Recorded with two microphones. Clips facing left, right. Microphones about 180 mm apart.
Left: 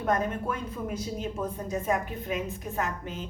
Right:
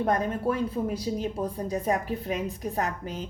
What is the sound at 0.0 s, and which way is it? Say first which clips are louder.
Speech: right 2 dB; 35° right (ahead or behind).